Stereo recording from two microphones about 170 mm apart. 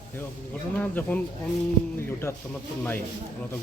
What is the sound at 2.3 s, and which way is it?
Speech, 20° left (ahead or behind).